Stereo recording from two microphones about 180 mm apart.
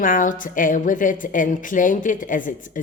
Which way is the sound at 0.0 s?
50° left (ahead or behind).